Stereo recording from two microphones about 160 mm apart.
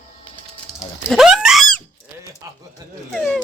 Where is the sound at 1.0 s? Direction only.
Centre (ahead or behind).